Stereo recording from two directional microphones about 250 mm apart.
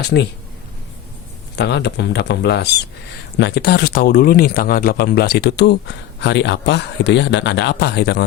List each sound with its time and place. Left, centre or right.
0.0 s speech: left
1.5 s speech: left